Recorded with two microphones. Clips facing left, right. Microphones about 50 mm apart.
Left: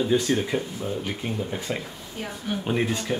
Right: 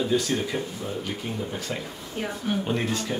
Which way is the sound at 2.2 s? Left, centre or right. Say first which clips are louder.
Right 3 dB; centre.